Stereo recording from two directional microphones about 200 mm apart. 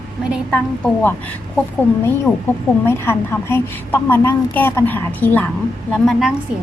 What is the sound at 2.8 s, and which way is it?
A woman's voice, 10° left (ahead or behind).